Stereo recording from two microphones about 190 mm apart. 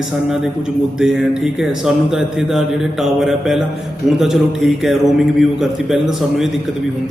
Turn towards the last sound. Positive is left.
turn(degrees=0)  # may be behind; listen again after turning